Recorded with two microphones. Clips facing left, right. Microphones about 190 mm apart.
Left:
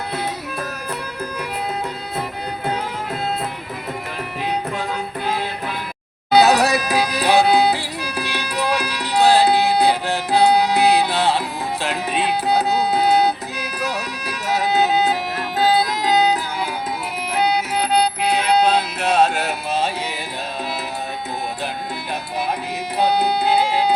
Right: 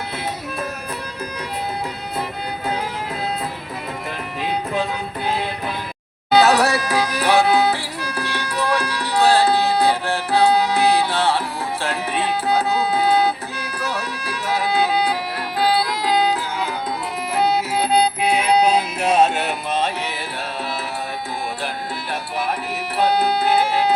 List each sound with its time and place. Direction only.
6.4 s music: 20° left (ahead or behind)
17.3 s music: centre (ahead or behind)
19.5 s music: 10° left (ahead or behind)
23.0 s music: 15° left (ahead or behind)